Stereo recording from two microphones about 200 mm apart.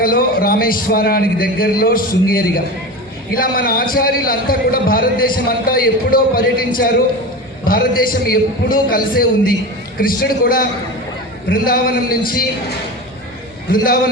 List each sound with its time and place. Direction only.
0.0 s a man's voice: 45° left (ahead or behind)
13.7 s a man's voice: 45° left (ahead or behind)